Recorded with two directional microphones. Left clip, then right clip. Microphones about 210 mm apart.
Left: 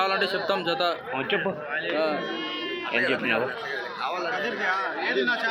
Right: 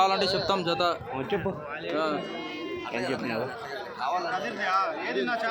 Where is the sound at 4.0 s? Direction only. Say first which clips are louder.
Right 2 dB; 55° right (ahead or behind).